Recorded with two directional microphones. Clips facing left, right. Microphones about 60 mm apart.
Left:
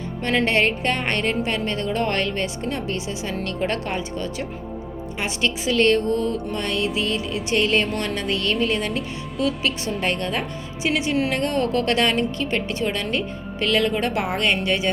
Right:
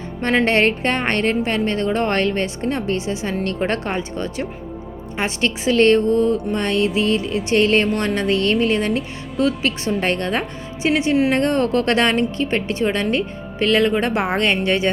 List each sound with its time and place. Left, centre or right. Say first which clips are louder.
0.2 s a woman's voice: right 4 dB; right
10.8 s a woman's voice: right 5 dB; right